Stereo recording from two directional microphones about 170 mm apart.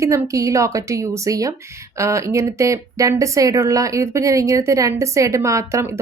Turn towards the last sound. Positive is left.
turn(degrees=-15)  # may be behind; listen again after turning